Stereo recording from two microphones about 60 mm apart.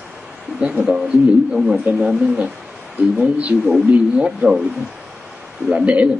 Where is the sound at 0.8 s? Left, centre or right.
Centre.